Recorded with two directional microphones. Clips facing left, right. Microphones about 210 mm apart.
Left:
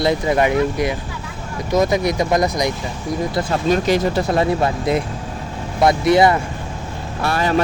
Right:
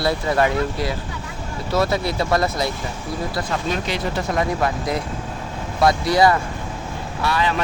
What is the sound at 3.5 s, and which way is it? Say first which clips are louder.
Speech: left 11 dB; 40° left (ahead or behind).